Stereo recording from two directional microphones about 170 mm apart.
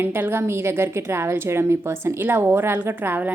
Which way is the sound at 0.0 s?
10° right (ahead or behind).